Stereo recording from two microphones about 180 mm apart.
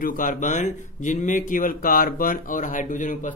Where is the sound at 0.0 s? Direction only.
45° left (ahead or behind).